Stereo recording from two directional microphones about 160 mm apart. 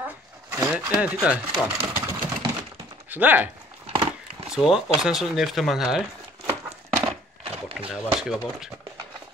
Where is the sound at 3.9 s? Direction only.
30° right (ahead or behind).